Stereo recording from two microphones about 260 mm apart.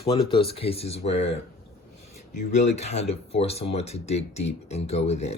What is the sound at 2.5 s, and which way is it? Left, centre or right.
Speech, left.